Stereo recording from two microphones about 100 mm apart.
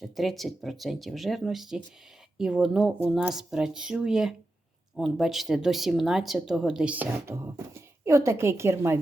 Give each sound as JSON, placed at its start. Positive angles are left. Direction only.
{"t": 0.0, "sound": "speech", "side_deg": 0}
{"t": 7.3, "sound": "speech", "side_deg": -30}